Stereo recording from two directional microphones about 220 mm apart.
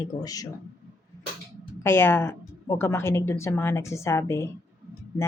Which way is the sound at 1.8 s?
10° left (ahead or behind).